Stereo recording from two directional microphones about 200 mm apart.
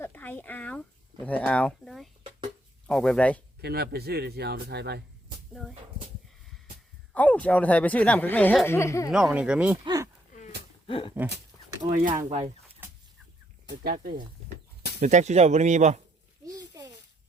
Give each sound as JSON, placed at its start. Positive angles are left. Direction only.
{"t": 0.0, "sound": "a sound", "side_deg": 10}
{"t": 1.2, "sound": "speech", "side_deg": 5}
{"t": 3.6, "sound": "a man's voice", "side_deg": -55}
{"t": 7.1, "sound": "speech", "side_deg": 5}
{"t": 9.1, "sound": "speech", "side_deg": -5}
{"t": 9.8, "sound": "speech", "side_deg": -20}
{"t": 10.8, "sound": "a sound", "side_deg": 25}
{"t": 12.0, "sound": "speech", "side_deg": -40}
{"t": 13.8, "sound": "a man's voice", "side_deg": -45}
{"t": 15.0, "sound": "speech", "side_deg": -35}
{"t": 16.5, "sound": "a sound", "side_deg": -20}